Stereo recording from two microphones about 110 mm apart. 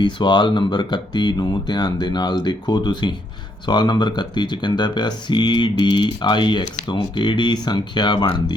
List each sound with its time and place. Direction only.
0.0 s speech: 45° left (ahead or behind)